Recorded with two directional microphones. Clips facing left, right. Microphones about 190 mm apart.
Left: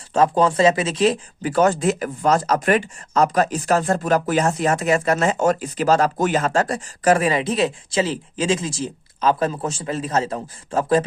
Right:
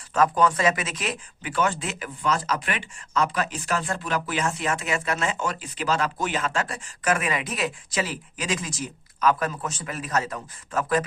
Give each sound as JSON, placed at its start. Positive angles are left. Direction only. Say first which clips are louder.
{"t": 0.1, "sound": "speech", "louder": "left 4 dB", "side_deg": 30}